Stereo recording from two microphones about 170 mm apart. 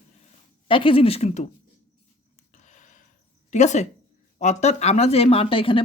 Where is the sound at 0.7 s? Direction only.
30° left (ahead or behind).